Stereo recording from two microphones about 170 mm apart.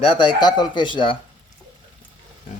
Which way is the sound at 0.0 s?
30° left (ahead or behind).